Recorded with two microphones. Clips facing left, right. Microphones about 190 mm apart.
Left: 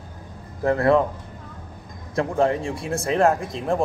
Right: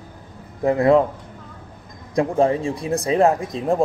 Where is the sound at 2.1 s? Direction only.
15° right (ahead or behind).